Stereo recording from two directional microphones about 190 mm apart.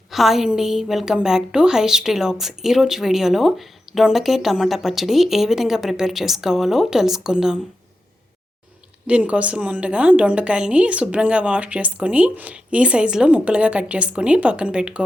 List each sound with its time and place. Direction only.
0.1 s a woman's voice: centre (ahead or behind)
9.0 s a woman's voice: 5° right (ahead or behind)